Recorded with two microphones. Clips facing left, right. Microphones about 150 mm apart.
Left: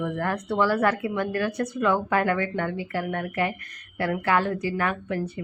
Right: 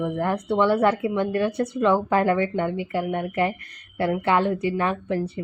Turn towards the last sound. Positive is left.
turn(degrees=-30)  # may be behind; listen again after turning